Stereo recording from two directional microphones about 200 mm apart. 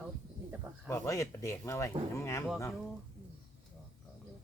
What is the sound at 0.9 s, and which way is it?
Speech, 15° left (ahead or behind).